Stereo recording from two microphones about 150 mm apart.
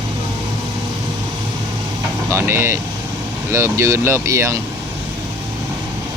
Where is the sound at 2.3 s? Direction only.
15° right (ahead or behind).